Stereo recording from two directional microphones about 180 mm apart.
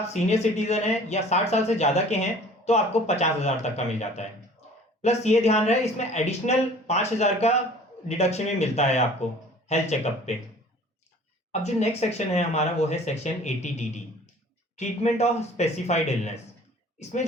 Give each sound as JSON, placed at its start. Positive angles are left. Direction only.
{"t": 0.1, "sound": "speech", "side_deg": 40}
{"t": 11.6, "sound": "speech", "side_deg": 40}